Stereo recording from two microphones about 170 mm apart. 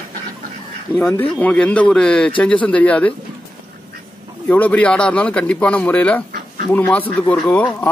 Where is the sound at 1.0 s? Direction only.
10° left (ahead or behind).